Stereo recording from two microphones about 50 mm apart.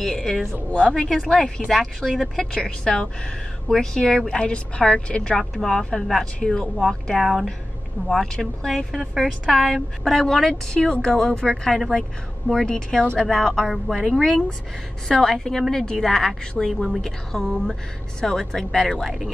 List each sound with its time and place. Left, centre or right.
0.0 s a sound: centre
0.7 s a woman's voice: left
1.7 s a woman's voice: centre; by 5.4 s left
5.4 s a woman's voice: centre
7.2 s speech: centre
8.2 s a woman's voice: centre
13.3 s a woman's voice: centre